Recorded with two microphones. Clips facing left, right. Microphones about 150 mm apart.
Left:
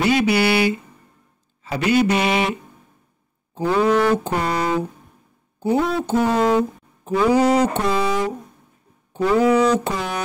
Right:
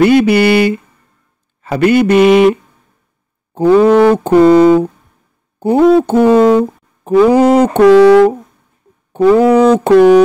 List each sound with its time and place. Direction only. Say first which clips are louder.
0.0 s speech: right 9 dB; 55° right (ahead or behind)
3.5 s speech: right 10 dB; 55° right (ahead or behind)
7.8 s speech: right 16 dB; 75° right (ahead or behind)
9.1 s speech: right 9 dB; 55° right (ahead or behind)